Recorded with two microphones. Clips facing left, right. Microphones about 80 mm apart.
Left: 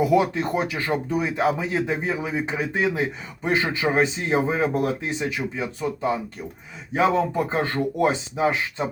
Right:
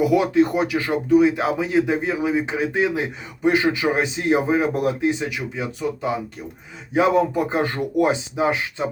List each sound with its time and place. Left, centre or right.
0.2 s speech: centre